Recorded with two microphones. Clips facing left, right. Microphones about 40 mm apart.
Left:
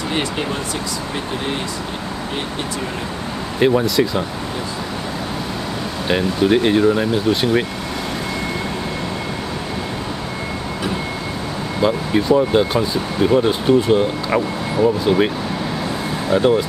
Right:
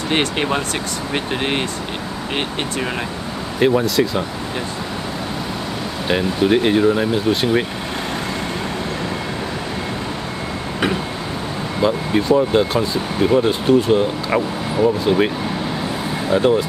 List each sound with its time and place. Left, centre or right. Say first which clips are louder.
0.1 s speech: right 5 dB; right
3.5 s speech: even; centre
6.0 s speech: even; centre
11.8 s speech: even; centre